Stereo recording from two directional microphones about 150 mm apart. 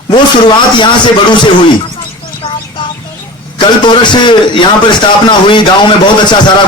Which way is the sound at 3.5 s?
30° left (ahead or behind).